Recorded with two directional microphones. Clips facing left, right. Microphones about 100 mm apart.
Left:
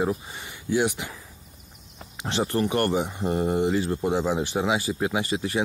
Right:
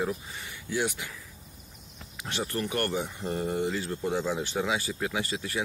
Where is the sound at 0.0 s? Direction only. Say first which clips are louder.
Left 5 dB; 25° left (ahead or behind).